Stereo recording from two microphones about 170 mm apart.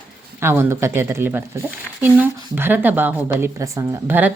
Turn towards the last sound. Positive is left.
turn(degrees=-10)  # may be behind; listen again after turning